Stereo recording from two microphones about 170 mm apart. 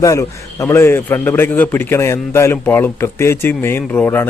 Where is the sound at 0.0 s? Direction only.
20° left (ahead or behind).